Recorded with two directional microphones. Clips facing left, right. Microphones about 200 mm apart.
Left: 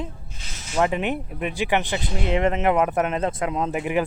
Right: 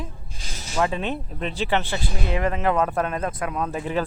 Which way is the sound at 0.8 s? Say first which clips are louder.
Left 2 dB; 20° left (ahead or behind).